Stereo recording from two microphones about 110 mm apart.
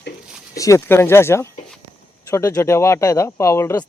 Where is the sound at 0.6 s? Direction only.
25° left (ahead or behind).